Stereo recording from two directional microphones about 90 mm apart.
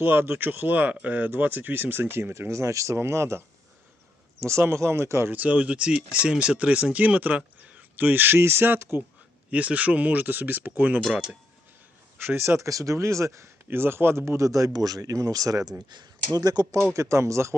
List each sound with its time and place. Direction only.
0.0 s speech: 25° right (ahead or behind)
5.3 s speech: 15° right (ahead or behind)
12.2 s speech: 25° right (ahead or behind); by 16.6 s 45° right (ahead or behind)
16.9 s speech: 35° right (ahead or behind)